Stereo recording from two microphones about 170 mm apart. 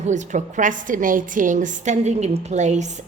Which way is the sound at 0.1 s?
50° right (ahead or behind).